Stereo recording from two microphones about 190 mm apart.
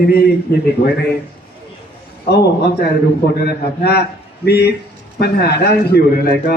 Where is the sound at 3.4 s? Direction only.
55° left (ahead or behind).